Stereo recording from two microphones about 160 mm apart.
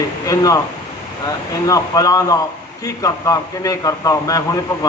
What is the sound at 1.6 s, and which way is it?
A man's voice, 20° left (ahead or behind).